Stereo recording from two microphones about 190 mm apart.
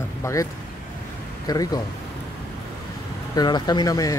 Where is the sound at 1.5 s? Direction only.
20° left (ahead or behind).